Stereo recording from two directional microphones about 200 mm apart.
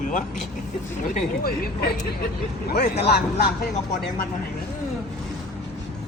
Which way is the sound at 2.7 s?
50° left (ahead or behind).